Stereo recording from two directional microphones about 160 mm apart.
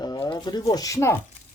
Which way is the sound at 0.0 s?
25° left (ahead or behind).